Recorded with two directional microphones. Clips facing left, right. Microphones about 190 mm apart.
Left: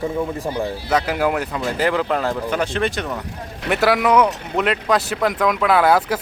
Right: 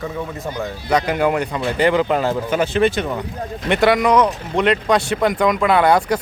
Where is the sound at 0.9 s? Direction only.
5° left (ahead or behind).